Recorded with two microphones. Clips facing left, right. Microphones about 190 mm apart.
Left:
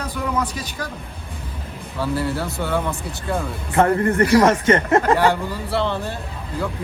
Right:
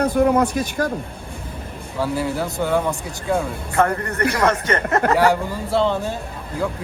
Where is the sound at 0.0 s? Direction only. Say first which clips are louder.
Right 8 dB; 55° right (ahead or behind).